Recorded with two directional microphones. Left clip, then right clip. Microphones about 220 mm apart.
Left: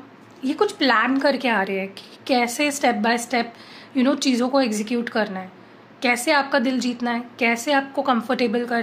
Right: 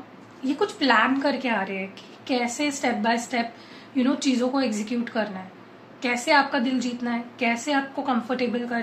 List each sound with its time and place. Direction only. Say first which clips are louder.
0.5 s a woman's voice: left 3 dB; 50° left (ahead or behind)